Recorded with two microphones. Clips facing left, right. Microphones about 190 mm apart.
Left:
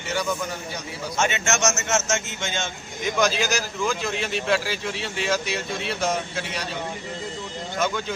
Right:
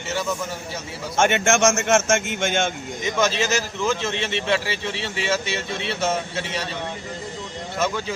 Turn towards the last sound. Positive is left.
turn(degrees=-5)  # may be behind; listen again after turning